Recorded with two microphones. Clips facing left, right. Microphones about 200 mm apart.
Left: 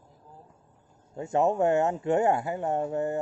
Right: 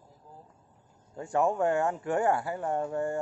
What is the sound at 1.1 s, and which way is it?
Speech, 20° left (ahead or behind).